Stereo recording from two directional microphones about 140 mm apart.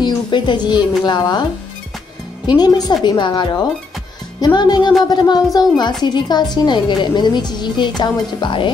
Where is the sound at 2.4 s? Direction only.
30° left (ahead or behind).